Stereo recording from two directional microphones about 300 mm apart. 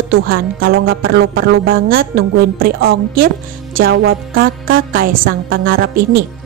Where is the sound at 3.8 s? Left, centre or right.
Right.